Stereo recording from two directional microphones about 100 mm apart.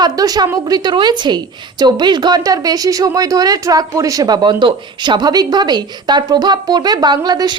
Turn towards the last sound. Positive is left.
turn(degrees=-45)  # may be behind; listen again after turning